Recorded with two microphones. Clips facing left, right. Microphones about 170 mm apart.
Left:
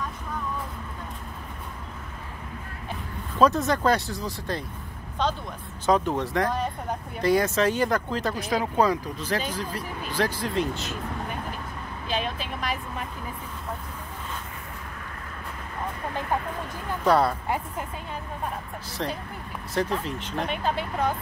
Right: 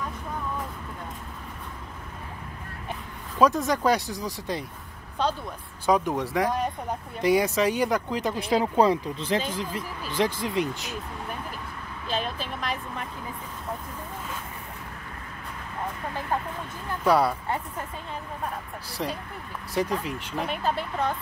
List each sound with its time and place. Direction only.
3.3 s speech: 10° right (ahead or behind)
5.9 s speech: 10° right (ahead or behind)
8.4 s speech: 30° right (ahead or behind)
12.1 s vehicle: centre (ahead or behind)
17.0 s speech: 10° right (ahead or behind)
19.0 s speech: 10° right (ahead or behind)